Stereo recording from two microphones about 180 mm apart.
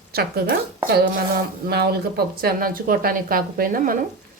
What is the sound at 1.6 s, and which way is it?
Speech, 60° right (ahead or behind).